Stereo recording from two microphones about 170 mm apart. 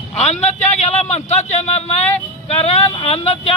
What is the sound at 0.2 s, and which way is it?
Speech, 40° left (ahead or behind).